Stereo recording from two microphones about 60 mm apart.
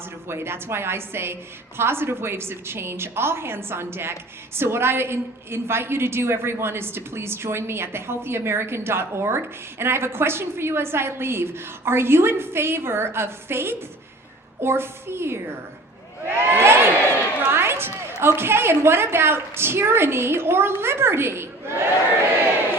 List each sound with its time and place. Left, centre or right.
0.3 s a woman's voice: right
16.5 s a woman's voice: right